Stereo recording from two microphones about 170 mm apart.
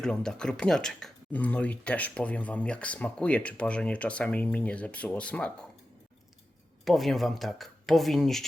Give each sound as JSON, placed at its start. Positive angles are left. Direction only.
{"t": 0.0, "sound": "speech", "side_deg": 5}
{"t": 6.8, "sound": "speech", "side_deg": 0}